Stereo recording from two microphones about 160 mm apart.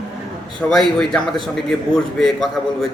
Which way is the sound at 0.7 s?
Centre (ahead or behind).